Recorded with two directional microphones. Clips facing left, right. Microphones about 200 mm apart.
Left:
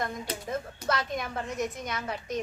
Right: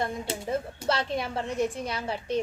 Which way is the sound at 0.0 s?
30° right (ahead or behind).